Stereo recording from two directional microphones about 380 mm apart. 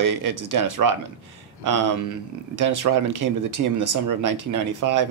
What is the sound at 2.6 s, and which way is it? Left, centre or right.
Speech, right.